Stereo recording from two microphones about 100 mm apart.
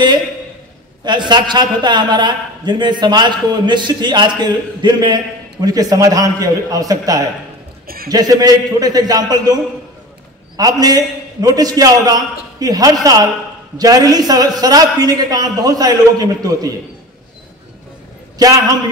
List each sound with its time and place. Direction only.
1.0 s a man's voice: 50° right (ahead or behind)
10.6 s a man's voice: 40° right (ahead or behind)